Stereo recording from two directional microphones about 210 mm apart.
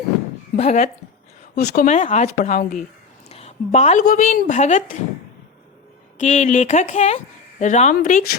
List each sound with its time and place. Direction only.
0.5 s speech: 35° left (ahead or behind)
3.2 s a sound: 30° left (ahead or behind)
4.0 s speech: 40° left (ahead or behind)
6.1 s speech: 35° left (ahead or behind)